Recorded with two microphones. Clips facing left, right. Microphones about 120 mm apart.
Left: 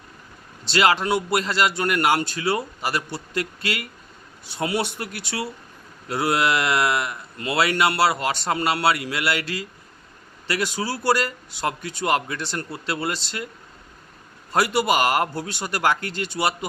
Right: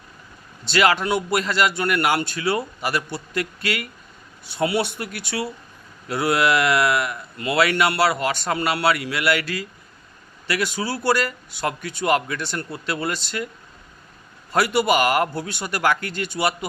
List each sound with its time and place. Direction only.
0.7 s speech: 30° left (ahead or behind)
14.5 s speech: 35° left (ahead or behind)